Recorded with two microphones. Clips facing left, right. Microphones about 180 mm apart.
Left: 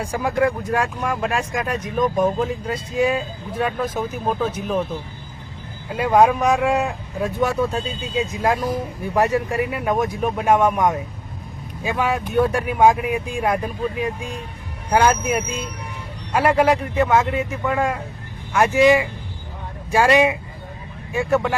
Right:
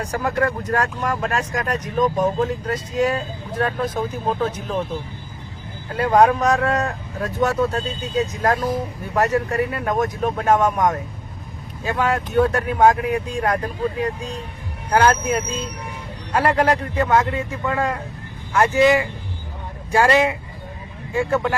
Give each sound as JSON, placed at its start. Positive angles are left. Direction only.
{"t": 0.0, "sound": "speech", "side_deg": 10}
{"t": 5.9, "sound": "speech", "side_deg": 10}